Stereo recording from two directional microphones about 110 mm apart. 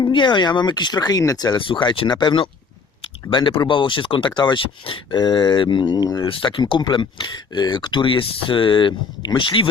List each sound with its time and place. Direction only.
0.0 s speech: 45° left (ahead or behind)
6.2 s speech: 50° left (ahead or behind)